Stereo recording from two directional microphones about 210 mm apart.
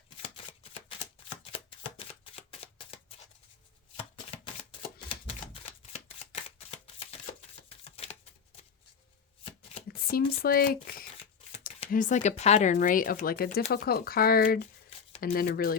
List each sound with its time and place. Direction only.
0.2 s shuffling cards: 25° left (ahead or behind)
4.9 s typewriter: 25° left (ahead or behind)
6.7 s shuffling cards: 30° left (ahead or behind)
10.1 s speech: 45° left (ahead or behind)